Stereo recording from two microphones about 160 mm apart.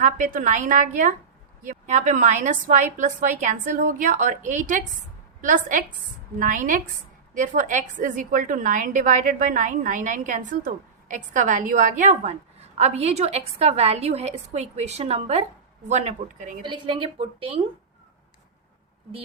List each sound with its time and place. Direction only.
0.0 s a woman's voice: 55° right (ahead or behind)
16.6 s a woman's voice: 30° right (ahead or behind)